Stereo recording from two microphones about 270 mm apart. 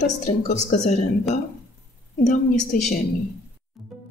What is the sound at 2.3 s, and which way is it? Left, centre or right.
Speech, left.